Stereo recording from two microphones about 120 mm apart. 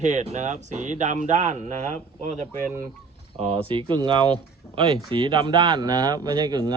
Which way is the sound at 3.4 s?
50° right (ahead or behind).